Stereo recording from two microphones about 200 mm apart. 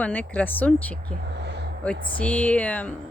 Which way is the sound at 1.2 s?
60° right (ahead or behind).